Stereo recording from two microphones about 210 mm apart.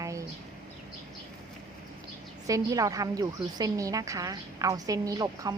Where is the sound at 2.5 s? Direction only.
15° right (ahead or behind).